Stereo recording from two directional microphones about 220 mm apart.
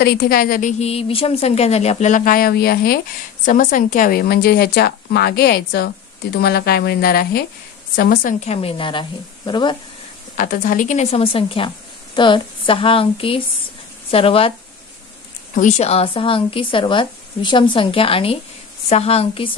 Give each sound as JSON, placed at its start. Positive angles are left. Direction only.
{"t": 0.0, "sound": "a woman's voice", "side_deg": 45}
{"t": 10.3, "sound": "a woman's voice", "side_deg": 35}
{"t": 15.5, "sound": "speech", "side_deg": 35}